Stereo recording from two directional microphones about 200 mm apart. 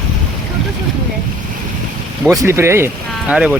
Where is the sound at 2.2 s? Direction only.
15° right (ahead or behind).